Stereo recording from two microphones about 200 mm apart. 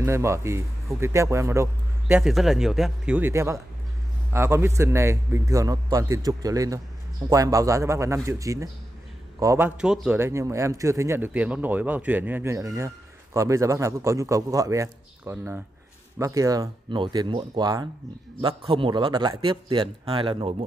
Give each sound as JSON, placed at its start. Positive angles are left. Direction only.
{"t": 0.0, "sound": "a man's voice", "side_deg": -15}
{"t": 2.1, "sound": "a man's voice", "side_deg": 0}